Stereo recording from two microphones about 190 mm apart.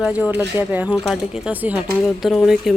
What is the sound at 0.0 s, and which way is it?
Speech, 5° right (ahead or behind).